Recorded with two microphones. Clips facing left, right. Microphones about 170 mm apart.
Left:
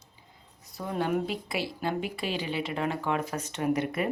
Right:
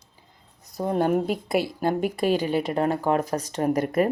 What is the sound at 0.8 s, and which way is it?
Speech, 45° right (ahead or behind).